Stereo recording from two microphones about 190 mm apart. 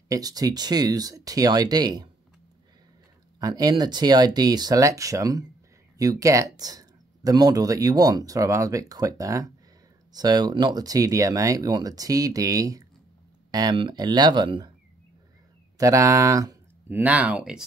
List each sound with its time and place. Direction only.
0.1 s speech: 20° right (ahead or behind)
3.3 s speech: 20° right (ahead or behind)
15.8 s speech: 15° right (ahead or behind)